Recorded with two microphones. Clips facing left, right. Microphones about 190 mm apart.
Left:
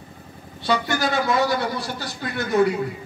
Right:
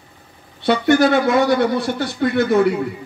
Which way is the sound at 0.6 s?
60° right (ahead or behind).